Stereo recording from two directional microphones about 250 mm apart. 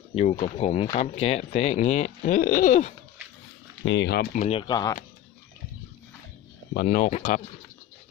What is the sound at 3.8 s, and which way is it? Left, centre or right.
Speech, left.